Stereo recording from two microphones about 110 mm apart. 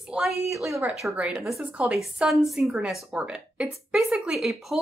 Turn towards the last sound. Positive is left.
turn(degrees=0)  # may be behind; listen again after turning